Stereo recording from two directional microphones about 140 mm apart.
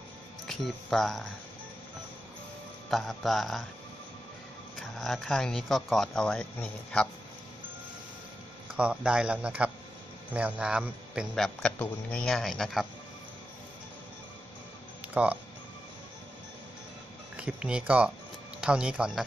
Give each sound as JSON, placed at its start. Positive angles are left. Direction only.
{"t": 0.5, "sound": "speech", "side_deg": 0}
{"t": 2.9, "sound": "speech", "side_deg": 0}
{"t": 4.7, "sound": "speech", "side_deg": 0}
{"t": 8.7, "sound": "speech", "side_deg": -10}
{"t": 15.2, "sound": "speech", "side_deg": -10}
{"t": 17.4, "sound": "speech", "side_deg": -10}